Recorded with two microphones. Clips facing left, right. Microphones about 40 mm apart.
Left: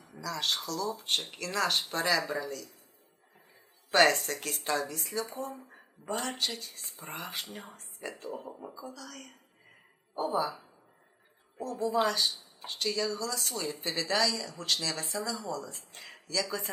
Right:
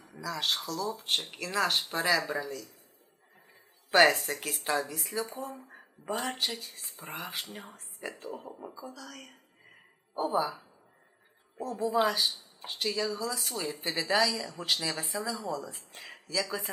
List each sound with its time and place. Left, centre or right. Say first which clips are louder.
0.2 s speech: right 1 dB; centre
3.9 s speech: right 2 dB; centre